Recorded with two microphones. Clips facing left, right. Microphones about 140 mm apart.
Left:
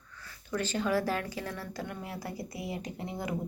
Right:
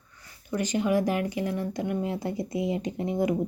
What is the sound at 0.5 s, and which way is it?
Speech, 15° right (ahead or behind).